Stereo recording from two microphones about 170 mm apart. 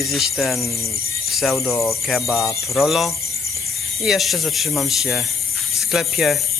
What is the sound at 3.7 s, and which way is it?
Speech, centre (ahead or behind).